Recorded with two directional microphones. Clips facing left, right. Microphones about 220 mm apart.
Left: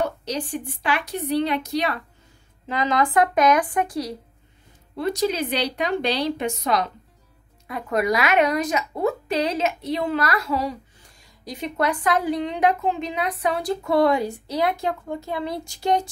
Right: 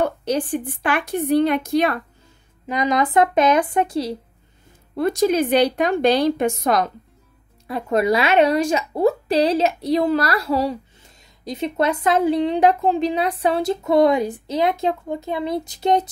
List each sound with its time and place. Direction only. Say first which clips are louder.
0.0 s a woman's voice: right 5 dB; 55° right (ahead or behind)
2.6 s speech: right 2 dB; 20° right (ahead or behind)
4.9 s a woman's voice: right 5 dB; 50° right (ahead or behind)
7.6 s speech: right 4 dB; 30° right (ahead or behind)